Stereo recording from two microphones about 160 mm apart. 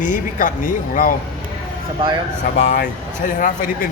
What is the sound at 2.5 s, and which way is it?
Speech, 50° left (ahead or behind).